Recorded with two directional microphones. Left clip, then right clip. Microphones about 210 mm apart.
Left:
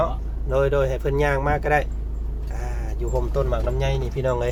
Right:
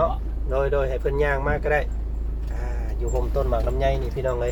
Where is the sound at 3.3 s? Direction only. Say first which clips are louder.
Right 1 dB; 35° left (ahead or behind).